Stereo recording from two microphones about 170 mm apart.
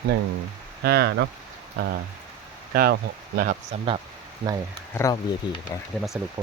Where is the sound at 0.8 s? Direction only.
70° right (ahead or behind).